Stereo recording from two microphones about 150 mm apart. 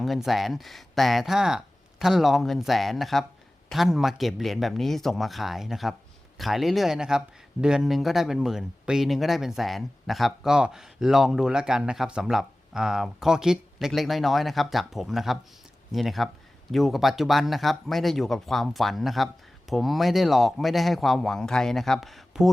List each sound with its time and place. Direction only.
0.0 s speech: centre (ahead or behind)